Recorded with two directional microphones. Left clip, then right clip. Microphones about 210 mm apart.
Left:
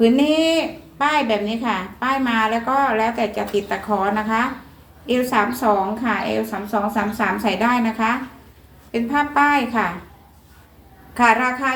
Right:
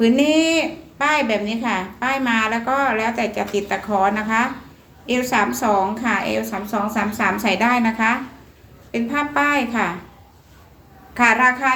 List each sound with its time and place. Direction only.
0.0 s a woman's voice: 20° right (ahead or behind)
11.1 s a woman's voice: 15° right (ahead or behind)